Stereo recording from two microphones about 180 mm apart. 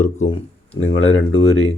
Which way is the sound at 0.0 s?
35° left (ahead or behind).